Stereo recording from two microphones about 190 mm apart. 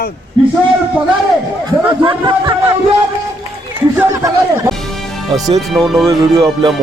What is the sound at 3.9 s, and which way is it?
Speech, 15° right (ahead or behind).